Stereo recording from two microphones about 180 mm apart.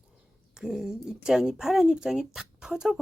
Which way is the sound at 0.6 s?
5° right (ahead or behind).